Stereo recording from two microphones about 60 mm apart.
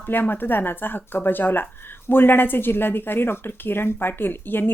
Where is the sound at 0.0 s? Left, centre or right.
Left.